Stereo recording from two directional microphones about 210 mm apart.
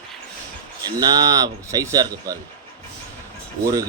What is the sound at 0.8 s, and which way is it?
Speech, 20° right (ahead or behind).